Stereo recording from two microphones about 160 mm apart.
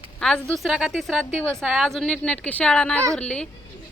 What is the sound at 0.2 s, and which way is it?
A woman's voice, 5° left (ahead or behind).